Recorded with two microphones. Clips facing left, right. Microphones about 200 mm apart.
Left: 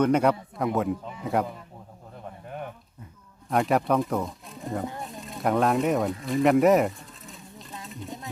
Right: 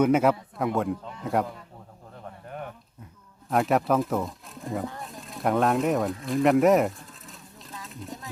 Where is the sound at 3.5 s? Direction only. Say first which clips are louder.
Even; centre (ahead or behind).